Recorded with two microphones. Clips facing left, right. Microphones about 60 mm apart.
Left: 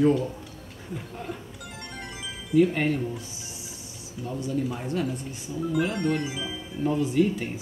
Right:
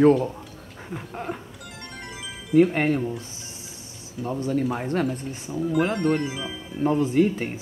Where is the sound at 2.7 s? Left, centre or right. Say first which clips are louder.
Right 3 dB; right.